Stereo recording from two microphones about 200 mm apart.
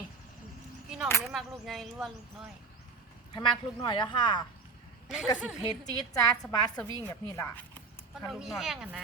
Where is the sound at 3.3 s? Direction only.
25° left (ahead or behind).